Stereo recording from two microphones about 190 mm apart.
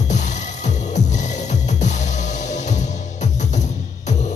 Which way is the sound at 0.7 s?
40° left (ahead or behind).